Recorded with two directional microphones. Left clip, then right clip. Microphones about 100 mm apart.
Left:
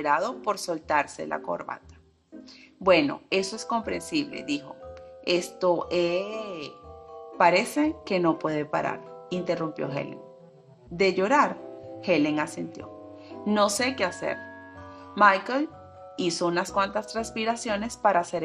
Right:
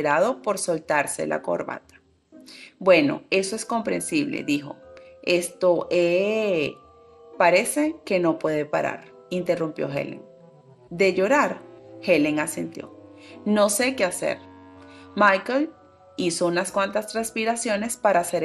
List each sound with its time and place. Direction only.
0.0 s speech: 40° right (ahead or behind)
2.8 s a woman's voice: 35° right (ahead or behind)